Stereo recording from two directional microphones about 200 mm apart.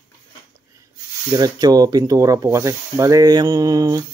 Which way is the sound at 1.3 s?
20° right (ahead or behind).